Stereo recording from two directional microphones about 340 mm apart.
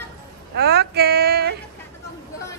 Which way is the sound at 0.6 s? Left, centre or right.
Right.